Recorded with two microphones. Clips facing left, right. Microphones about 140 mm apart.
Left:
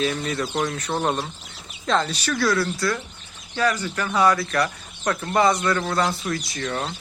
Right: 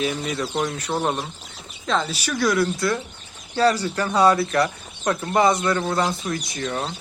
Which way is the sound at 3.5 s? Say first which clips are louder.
Right 4 dB; 35° right (ahead or behind).